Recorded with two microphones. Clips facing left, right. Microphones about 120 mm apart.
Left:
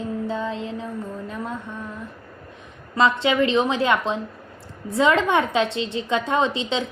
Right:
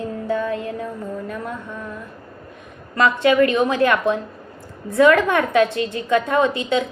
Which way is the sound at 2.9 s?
25° left (ahead or behind).